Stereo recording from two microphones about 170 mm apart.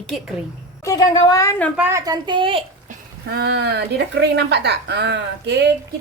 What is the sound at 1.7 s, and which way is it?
Speech, 15° right (ahead or behind).